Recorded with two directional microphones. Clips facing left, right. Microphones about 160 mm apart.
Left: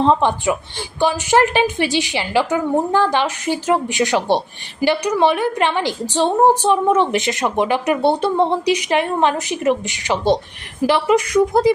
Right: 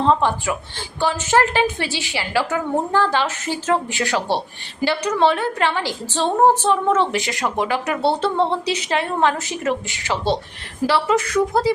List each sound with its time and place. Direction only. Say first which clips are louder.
0.0 s a woman's voice: left 3 dB; 20° left (ahead or behind)